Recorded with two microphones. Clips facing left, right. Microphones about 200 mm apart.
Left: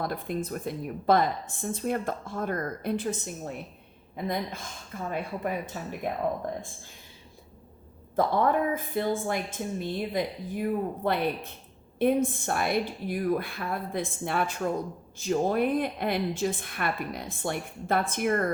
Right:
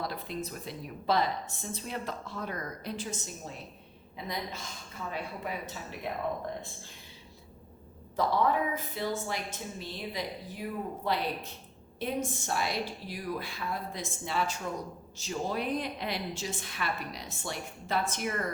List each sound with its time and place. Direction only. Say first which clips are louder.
0.0 s a woman's voice: left 5 dB; 50° left (ahead or behind)
8.1 s a woman's voice: left 3 dB; 50° left (ahead or behind)